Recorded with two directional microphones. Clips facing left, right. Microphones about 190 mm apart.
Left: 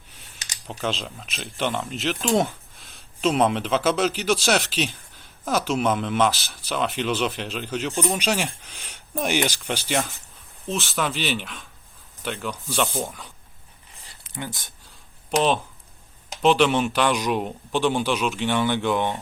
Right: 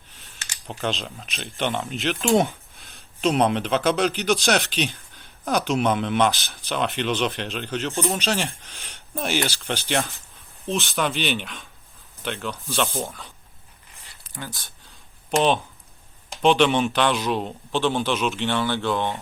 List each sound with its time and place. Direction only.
0.3 s computer keyboard: 20° left (ahead or behind)
0.7 s a man's voice: centre (ahead or behind)
9.9 s speech: centre (ahead or behind)
12.5 s a man's voice: 15° left (ahead or behind)
14.3 s speech: 20° left (ahead or behind)
15.4 s a man's voice: centre (ahead or behind); by 19.2 s 15° left (ahead or behind)